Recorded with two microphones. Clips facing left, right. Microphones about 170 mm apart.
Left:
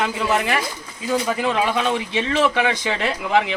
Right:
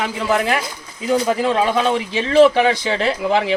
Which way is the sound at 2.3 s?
30° right (ahead or behind).